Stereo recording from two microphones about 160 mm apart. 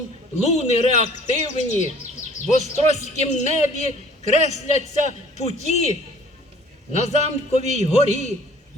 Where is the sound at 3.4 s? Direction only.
45° left (ahead or behind).